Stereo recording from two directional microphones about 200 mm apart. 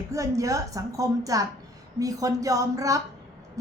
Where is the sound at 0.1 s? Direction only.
15° right (ahead or behind).